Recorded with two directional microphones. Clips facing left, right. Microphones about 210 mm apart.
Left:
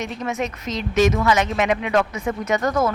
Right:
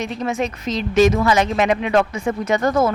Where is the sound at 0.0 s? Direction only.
30° right (ahead or behind).